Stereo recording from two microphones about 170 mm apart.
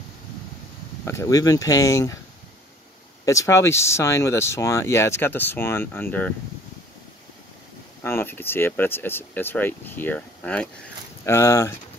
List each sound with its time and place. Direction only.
1.0 s speech: 15° left (ahead or behind)
3.3 s speech: 15° left (ahead or behind)
8.0 s speech: 15° left (ahead or behind)
11.2 s speech: 15° left (ahead or behind)